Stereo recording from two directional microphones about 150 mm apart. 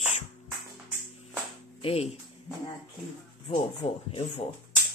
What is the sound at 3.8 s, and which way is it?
Speech, 40° left (ahead or behind).